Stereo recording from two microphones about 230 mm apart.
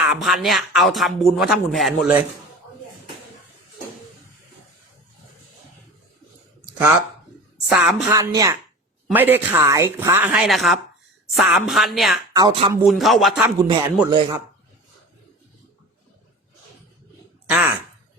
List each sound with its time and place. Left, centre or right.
0.0 s speech: centre
7.7 s speech: centre
12.3 s speech: centre
12.7 s speech: centre
13.6 s speech: centre